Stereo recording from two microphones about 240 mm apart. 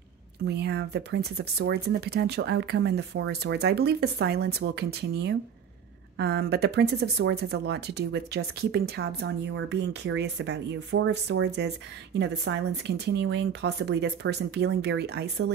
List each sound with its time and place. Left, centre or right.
0.5 s speech: right